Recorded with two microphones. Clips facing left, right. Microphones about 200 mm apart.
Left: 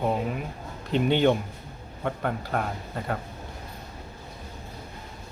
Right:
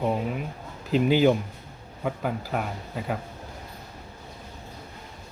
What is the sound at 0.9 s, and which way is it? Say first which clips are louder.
Speech: right 2 dB; 5° right (ahead or behind).